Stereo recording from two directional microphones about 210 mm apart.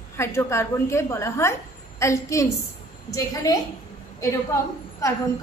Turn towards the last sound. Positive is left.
turn(degrees=15)  # may be behind; listen again after turning